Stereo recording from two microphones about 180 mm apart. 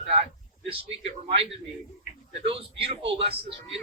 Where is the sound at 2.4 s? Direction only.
30° right (ahead or behind).